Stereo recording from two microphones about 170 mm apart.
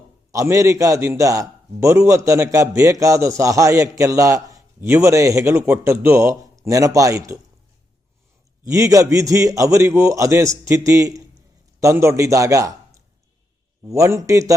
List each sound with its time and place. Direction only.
0.3 s a man's voice: 20° right (ahead or behind)
8.7 s a man's voice: 20° right (ahead or behind)